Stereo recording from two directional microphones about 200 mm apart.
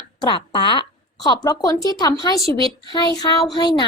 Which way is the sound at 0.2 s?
20° left (ahead or behind).